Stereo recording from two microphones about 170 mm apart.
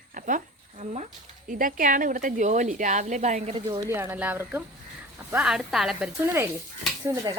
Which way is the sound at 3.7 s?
20° right (ahead or behind).